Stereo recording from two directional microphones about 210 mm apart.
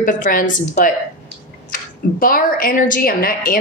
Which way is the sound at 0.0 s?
40° left (ahead or behind).